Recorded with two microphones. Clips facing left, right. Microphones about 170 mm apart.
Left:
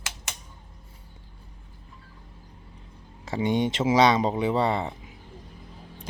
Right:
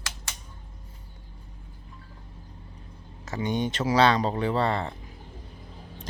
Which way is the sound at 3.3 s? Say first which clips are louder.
Left 3 dB; 25° left (ahead or behind).